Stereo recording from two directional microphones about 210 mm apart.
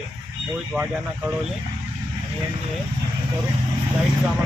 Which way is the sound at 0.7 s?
10° right (ahead or behind).